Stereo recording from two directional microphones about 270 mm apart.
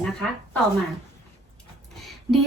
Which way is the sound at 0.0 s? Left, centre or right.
Centre.